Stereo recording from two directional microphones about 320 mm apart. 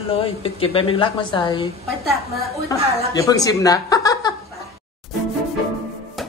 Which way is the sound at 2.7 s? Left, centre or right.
Centre.